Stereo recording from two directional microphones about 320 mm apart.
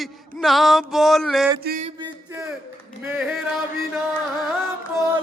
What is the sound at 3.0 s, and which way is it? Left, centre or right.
Speech, centre.